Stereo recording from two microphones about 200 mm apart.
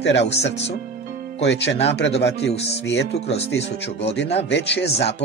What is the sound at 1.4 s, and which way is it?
Speech, 60° left (ahead or behind).